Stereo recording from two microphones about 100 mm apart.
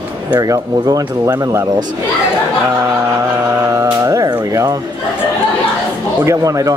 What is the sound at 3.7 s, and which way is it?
Mantra, 35° right (ahead or behind).